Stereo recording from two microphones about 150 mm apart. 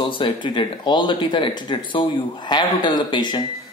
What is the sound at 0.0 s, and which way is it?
Speech, 35° left (ahead or behind).